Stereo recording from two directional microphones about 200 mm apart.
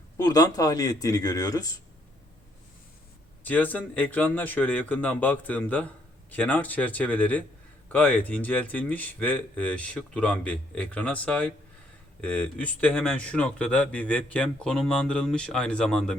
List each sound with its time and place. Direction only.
0.2 s speech: 20° left (ahead or behind)
3.4 s speech: 10° left (ahead or behind)